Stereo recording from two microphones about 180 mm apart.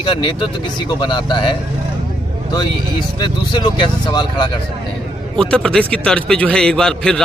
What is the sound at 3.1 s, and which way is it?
Speech, 25° left (ahead or behind).